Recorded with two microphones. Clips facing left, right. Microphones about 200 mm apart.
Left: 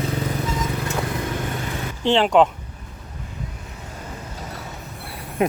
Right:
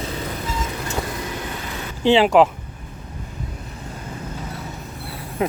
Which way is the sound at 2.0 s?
5° right (ahead or behind).